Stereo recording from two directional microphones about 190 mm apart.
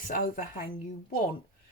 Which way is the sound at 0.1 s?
50° left (ahead or behind).